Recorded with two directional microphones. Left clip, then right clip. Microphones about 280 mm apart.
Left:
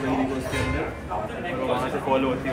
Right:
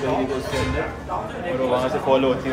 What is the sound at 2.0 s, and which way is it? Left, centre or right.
Speech, right.